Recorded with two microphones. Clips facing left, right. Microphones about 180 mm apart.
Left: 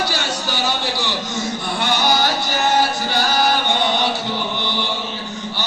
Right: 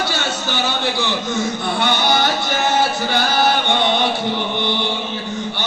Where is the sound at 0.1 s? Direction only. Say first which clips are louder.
Right 1 dB; 55° right (ahead or behind).